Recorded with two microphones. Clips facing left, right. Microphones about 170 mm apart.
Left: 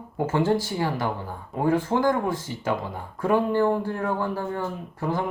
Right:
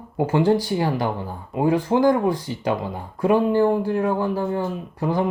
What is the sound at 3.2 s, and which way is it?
Speech, 15° right (ahead or behind).